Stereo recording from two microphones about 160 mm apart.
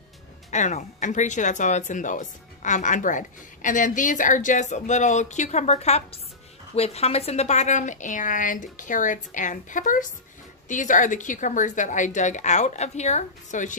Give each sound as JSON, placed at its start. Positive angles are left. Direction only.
{"t": 0.5, "sound": "speech", "side_deg": 50}